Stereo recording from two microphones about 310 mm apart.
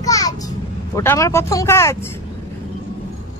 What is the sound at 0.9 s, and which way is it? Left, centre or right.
Speech, centre.